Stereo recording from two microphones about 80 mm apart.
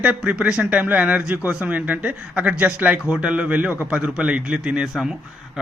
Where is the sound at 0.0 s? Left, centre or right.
Centre.